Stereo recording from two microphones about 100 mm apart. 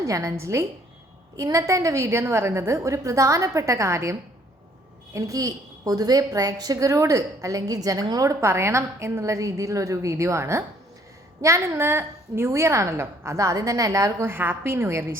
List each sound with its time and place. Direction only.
0.0 s a woman's voice: 30° right (ahead or behind)